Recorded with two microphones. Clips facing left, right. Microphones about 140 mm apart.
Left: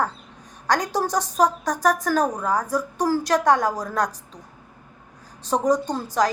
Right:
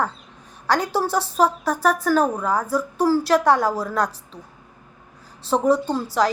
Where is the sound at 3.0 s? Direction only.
45° left (ahead or behind).